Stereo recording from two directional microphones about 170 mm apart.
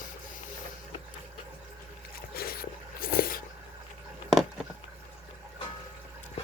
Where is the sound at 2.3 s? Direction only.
65° left (ahead or behind).